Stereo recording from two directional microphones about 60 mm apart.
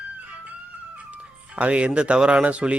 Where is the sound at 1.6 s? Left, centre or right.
Centre.